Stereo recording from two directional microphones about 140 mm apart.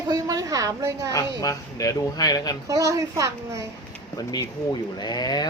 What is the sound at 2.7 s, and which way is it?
Speech, 25° right (ahead or behind).